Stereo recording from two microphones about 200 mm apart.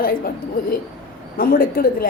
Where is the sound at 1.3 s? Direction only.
45° left (ahead or behind).